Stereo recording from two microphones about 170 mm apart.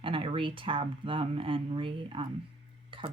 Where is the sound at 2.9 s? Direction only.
30° right (ahead or behind).